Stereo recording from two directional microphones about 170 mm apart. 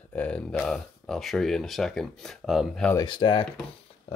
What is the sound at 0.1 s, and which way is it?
Speech, 5° left (ahead or behind).